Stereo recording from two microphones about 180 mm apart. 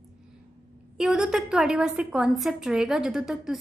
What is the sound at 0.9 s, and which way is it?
Speech, 5° right (ahead or behind).